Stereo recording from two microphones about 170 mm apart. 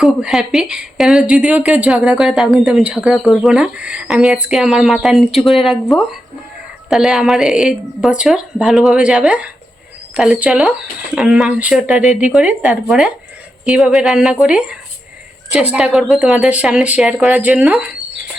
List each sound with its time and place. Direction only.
0.0 s a woman's voice: centre (ahead or behind)